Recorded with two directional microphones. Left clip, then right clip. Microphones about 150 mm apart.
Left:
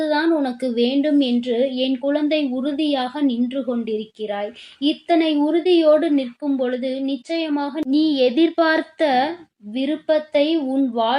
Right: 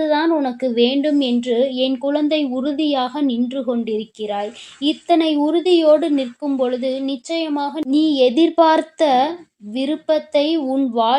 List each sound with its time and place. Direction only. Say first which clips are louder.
0.0 s a woman's voice: right 2 dB; 35° right (ahead or behind)